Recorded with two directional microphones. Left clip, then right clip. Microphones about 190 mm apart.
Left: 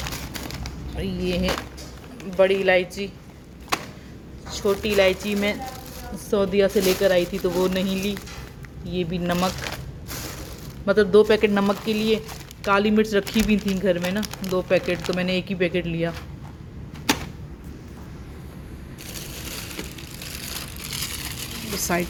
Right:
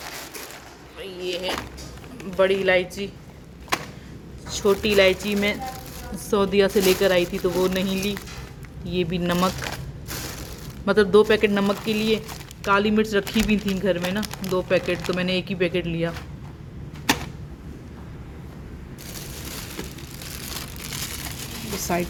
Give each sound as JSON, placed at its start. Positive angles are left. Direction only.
{"t": 0.9, "sound": "speech", "side_deg": 0}
{"t": 4.4, "sound": "speech", "side_deg": -15}
{"t": 8.9, "sound": "speech", "side_deg": -10}
{"t": 10.8, "sound": "speech", "side_deg": -5}
{"t": 14.9, "sound": "speech", "side_deg": 15}
{"t": 15.2, "sound": "speech", "side_deg": 0}
{"t": 20.8, "sound": "vehicle", "side_deg": -45}